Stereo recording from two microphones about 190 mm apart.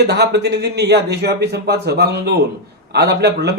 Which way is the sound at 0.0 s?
60° right (ahead or behind).